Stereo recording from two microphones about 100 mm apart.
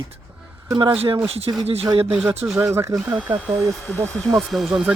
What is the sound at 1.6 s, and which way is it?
Speech, 90° right.